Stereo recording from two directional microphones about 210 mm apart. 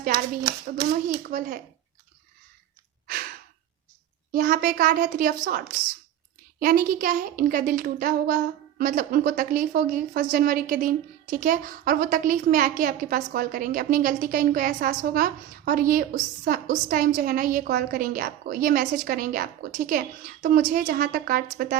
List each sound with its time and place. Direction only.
1.0 s a woman's voice: 40° right (ahead or behind)
4.3 s a woman's voice: 40° right (ahead or behind)